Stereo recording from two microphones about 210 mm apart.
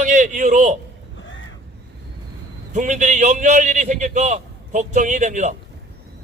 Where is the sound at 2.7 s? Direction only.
35° right (ahead or behind).